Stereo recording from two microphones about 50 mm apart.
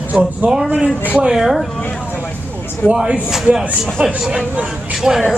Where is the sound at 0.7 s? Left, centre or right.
Right.